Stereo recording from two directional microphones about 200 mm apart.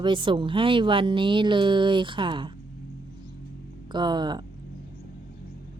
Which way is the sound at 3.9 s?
20° right (ahead or behind).